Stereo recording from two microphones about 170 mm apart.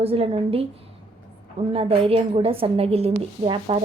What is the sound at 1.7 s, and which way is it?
A woman's voice, 35° right (ahead or behind).